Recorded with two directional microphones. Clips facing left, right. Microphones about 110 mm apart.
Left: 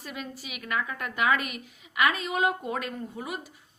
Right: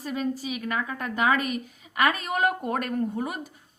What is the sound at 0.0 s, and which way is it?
A woman's voice, 35° right (ahead or behind).